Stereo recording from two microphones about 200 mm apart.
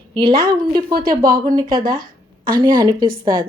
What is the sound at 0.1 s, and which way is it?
A woman's voice, 25° right (ahead or behind).